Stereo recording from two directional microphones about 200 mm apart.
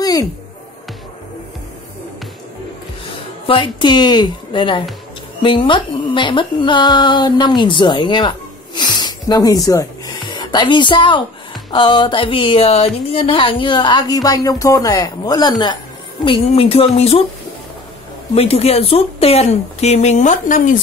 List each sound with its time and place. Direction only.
0.0 s music: 15° left (ahead or behind)
3.4 s a woman's voice: 25° left (ahead or behind)
18.3 s speech: 30° left (ahead or behind)